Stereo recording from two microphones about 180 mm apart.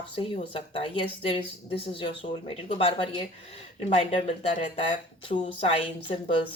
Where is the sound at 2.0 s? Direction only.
30° left (ahead or behind).